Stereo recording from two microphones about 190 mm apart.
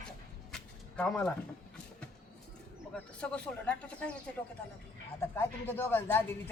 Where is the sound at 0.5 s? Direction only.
5° left (ahead or behind).